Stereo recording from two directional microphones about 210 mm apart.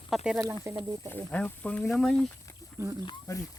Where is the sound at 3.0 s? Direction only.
15° left (ahead or behind).